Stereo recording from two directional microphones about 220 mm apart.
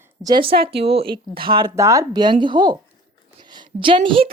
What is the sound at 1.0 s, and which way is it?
Speech, 45° right (ahead or behind).